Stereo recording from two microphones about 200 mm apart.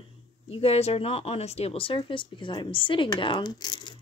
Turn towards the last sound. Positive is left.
turn(degrees=20)  # may be behind; listen again after turning